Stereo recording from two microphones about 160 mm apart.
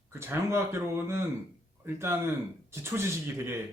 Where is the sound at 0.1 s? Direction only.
15° right (ahead or behind).